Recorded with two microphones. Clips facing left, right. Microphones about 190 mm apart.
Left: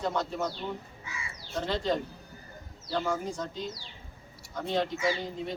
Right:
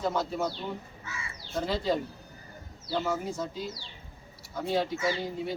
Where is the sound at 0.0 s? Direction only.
5° right (ahead or behind).